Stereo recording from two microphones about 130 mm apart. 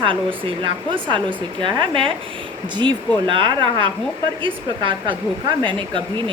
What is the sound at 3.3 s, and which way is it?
Speech, 40° right (ahead or behind).